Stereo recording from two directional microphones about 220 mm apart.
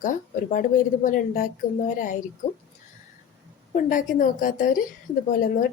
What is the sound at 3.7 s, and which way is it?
Speech, 35° left (ahead or behind).